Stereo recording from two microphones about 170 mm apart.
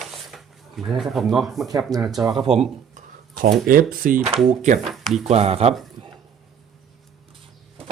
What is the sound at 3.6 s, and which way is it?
Speech, 55° right (ahead or behind).